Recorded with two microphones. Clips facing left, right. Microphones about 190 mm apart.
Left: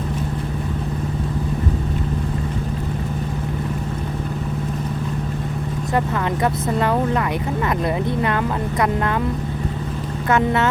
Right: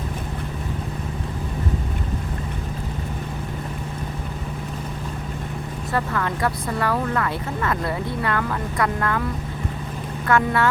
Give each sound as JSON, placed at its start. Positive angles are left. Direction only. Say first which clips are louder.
{"t": 5.9, "sound": "speech", "louder": "left 3 dB", "side_deg": 20}
{"t": 10.2, "sound": "speech", "louder": "left 2 dB", "side_deg": 20}